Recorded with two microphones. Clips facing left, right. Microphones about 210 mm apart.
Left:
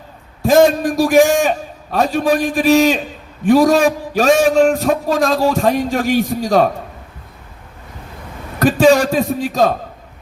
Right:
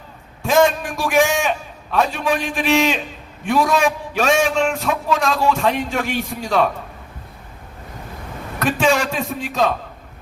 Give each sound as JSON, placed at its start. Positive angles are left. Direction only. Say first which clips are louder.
{"t": 0.4, "sound": "a man's voice", "louder": "left 5 dB", "side_deg": 40}
{"t": 8.5, "sound": "a man's voice", "louder": "left 7 dB", "side_deg": 40}